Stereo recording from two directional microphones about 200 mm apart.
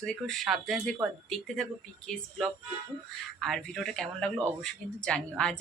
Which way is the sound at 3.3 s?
Centre (ahead or behind).